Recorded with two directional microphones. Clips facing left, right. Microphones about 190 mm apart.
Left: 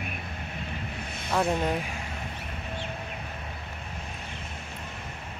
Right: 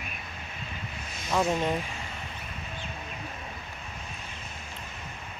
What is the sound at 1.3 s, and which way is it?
Speech, centre (ahead or behind).